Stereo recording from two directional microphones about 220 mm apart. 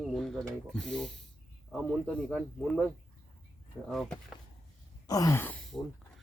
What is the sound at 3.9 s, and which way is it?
Speech, centre (ahead or behind).